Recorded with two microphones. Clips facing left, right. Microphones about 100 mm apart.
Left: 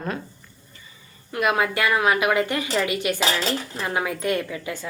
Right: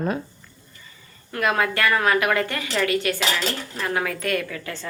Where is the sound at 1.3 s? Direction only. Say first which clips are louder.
Even; 15° left (ahead or behind).